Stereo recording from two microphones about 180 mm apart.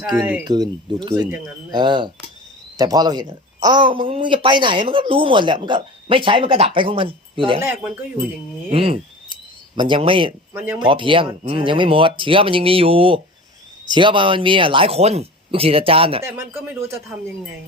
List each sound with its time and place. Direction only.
0.0 s speech: 5° right (ahead or behind)
0.4 s speech: 20° right (ahead or behind)
8.7 s speech: 30° right (ahead or behind)